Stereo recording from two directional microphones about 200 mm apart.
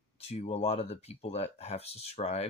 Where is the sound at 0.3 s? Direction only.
30° left (ahead or behind).